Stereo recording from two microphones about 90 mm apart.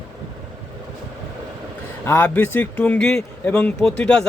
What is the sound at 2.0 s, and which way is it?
Speech, 25° left (ahead or behind).